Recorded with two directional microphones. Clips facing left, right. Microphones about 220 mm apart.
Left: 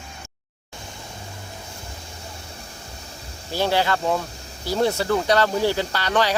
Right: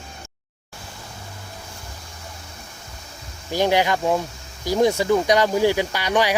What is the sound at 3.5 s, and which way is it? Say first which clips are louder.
Speech: right 2 dB; 15° right (ahead or behind).